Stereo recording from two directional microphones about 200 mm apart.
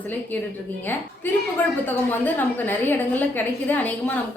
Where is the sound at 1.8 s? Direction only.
10° left (ahead or behind).